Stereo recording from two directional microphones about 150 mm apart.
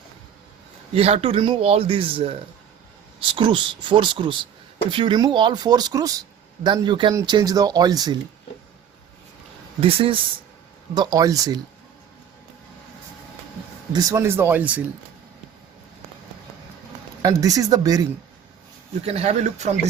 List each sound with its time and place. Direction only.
0.9 s speech: 40° right (ahead or behind)
9.8 s speech: 40° right (ahead or behind)
10.9 s speech: 25° right (ahead or behind)
13.9 s speech: 20° right (ahead or behind)
17.2 s speech: 25° right (ahead or behind)
19.0 s speech: 45° right (ahead or behind)